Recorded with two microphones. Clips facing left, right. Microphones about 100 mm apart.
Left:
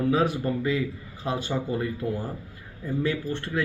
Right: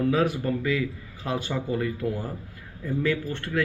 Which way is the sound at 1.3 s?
30° left (ahead or behind).